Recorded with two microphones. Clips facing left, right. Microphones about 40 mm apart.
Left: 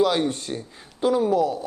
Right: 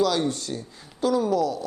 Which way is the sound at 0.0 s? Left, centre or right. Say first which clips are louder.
Left 2 dB; left.